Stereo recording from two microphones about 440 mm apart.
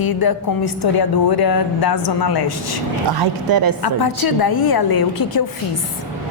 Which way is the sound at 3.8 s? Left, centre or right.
Left.